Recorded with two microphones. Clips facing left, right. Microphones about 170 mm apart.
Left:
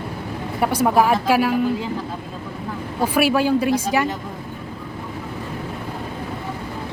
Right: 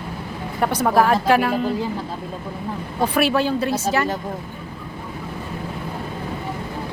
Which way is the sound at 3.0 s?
10° left (ahead or behind).